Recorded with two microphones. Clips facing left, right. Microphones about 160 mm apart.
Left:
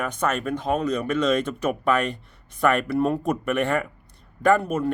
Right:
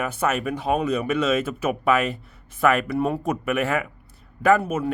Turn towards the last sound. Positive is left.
turn(degrees=-5)  # may be behind; listen again after turning